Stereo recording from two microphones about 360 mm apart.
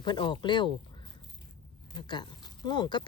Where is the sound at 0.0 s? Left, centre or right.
Centre.